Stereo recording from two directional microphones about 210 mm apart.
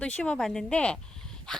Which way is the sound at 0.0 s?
5° left (ahead or behind).